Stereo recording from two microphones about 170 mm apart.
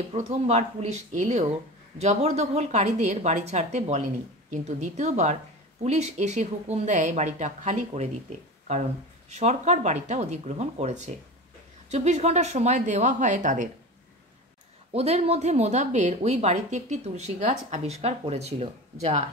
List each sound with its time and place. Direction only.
0.1 s speech: 40° right (ahead or behind)
14.9 s speech: 35° right (ahead or behind)